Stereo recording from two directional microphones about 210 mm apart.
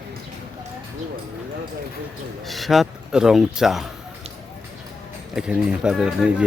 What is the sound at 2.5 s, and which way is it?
Speech, centre (ahead or behind).